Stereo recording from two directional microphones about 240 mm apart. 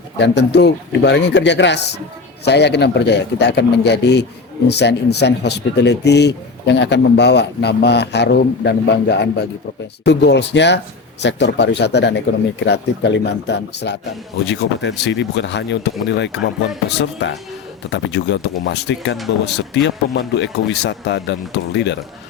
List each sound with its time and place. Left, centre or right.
0.2 s speech: left